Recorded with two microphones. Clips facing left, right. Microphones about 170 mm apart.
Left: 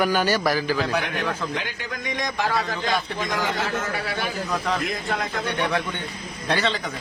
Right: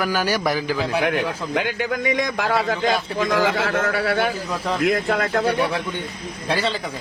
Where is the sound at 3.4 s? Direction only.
90° right; by 5.5 s 65° right (ahead or behind).